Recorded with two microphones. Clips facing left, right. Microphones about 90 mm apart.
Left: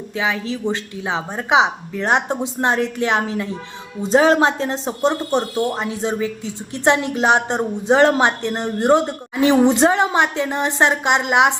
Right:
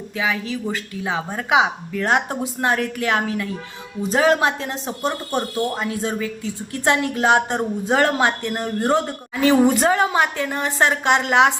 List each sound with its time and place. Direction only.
0.2 s speech: 30° left (ahead or behind)